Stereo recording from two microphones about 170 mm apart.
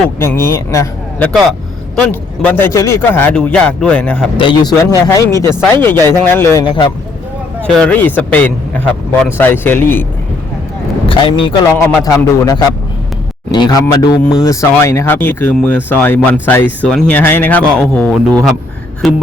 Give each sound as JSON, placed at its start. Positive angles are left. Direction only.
{"t": 0.2, "sound": "speech", "side_deg": 15}
{"t": 4.4, "sound": "a man's voice", "side_deg": 25}
{"t": 6.5, "sound": "a man's voice", "side_deg": 25}
{"t": 7.6, "sound": "speech", "side_deg": 10}
{"t": 11.1, "sound": "speech", "side_deg": 30}
{"t": 11.8, "sound": "a man's voice", "side_deg": 20}